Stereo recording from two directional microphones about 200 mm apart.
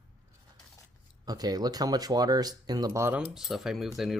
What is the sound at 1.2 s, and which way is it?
Speech, 20° right (ahead or behind).